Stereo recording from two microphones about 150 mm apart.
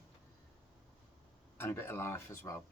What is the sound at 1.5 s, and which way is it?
Speech, 15° left (ahead or behind).